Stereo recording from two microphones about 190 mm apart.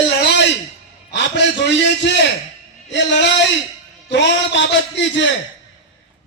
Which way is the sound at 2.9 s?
70° left (ahead or behind).